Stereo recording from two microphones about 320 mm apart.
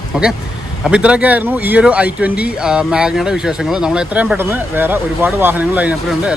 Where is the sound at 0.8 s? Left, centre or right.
Centre.